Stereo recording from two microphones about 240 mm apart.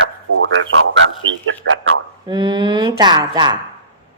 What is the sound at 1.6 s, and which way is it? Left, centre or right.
Speech, right.